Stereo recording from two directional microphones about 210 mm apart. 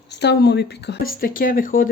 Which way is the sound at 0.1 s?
55° left (ahead or behind).